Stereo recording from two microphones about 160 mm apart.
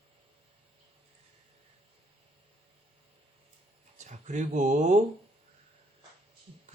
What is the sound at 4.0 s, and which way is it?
Speech, 50° right (ahead or behind).